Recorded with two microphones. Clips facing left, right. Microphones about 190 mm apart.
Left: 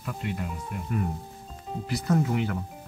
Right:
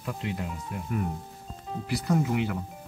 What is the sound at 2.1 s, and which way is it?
Speech, 10° right (ahead or behind).